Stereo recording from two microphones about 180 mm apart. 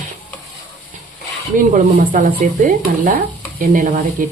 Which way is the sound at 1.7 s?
45° right (ahead or behind).